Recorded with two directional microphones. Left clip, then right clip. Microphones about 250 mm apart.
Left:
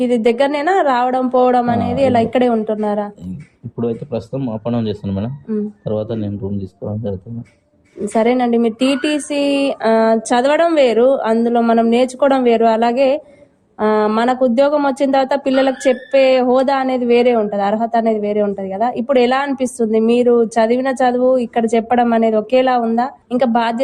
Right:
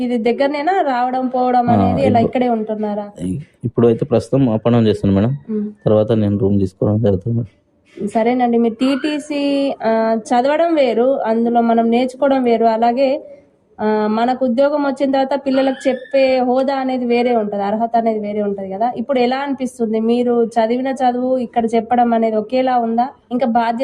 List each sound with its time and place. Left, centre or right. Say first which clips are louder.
0.0 s speech: left 2 dB; left
3.8 s speech: right 7 dB; right
8.1 s speech: left 1 dB; left